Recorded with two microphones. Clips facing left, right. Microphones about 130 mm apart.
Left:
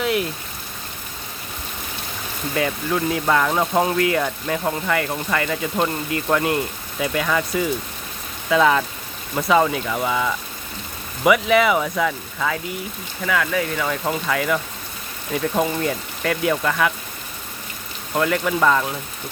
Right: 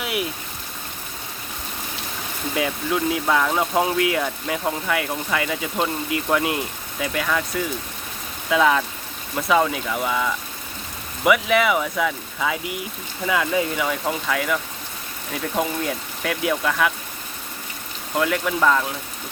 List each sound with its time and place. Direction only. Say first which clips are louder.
0.0 s rain: left 5 dB; 10° right (ahead or behind)
2.6 s speech: left 1 dB; 5° right (ahead or behind)
13.2 s speech: even; 20° right (ahead or behind)
14.0 s speech: left 2 dB; centre (ahead or behind)
18.1 s speech: left 2 dB; centre (ahead or behind)